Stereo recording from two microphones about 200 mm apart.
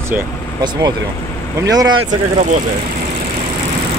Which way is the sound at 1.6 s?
20° right (ahead or behind).